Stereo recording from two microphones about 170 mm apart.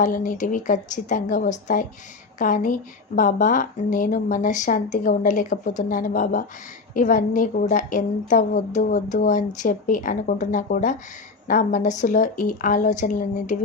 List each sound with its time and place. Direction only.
0.0 s speech: 50° left (ahead or behind)